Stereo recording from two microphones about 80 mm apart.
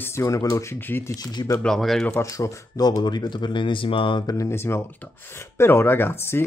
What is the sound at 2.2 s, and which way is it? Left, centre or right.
Speech, left.